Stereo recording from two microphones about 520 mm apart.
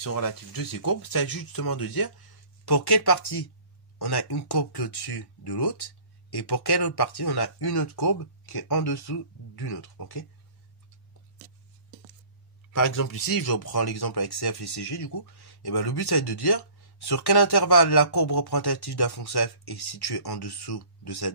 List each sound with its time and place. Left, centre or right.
0.0 s speech: left
12.7 s speech: left